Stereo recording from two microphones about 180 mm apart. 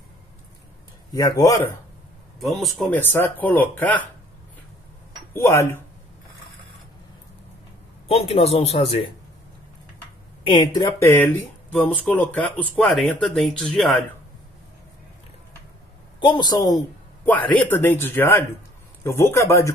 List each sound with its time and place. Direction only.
1.1 s speech: 20° left (ahead or behind)
2.4 s speech: centre (ahead or behind)
3.0 s a man's voice: 10° left (ahead or behind)
5.3 s a man's voice: 15° left (ahead or behind)
8.1 s speech: 35° left (ahead or behind)
10.4 s a man's voice: 25° left (ahead or behind); by 13.9 s 5° left (ahead or behind)
16.2 s a man's voice: 25° left (ahead or behind)